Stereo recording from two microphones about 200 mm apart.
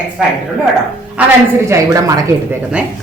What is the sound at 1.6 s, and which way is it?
Speech, 15° right (ahead or behind).